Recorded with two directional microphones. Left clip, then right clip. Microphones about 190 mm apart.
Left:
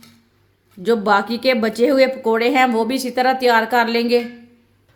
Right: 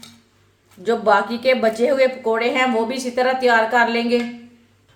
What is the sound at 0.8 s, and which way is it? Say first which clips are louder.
Speech: even; 55° left (ahead or behind).